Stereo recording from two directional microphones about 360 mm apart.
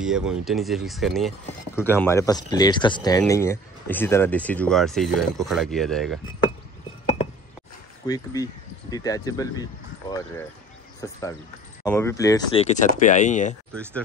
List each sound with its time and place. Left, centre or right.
0.0 s speech: centre
8.1 s speech: centre